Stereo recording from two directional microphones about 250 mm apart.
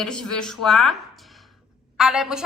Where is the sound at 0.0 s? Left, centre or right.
Centre.